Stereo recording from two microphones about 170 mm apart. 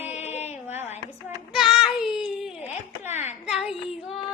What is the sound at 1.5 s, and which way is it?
Baby cry, centre (ahead or behind).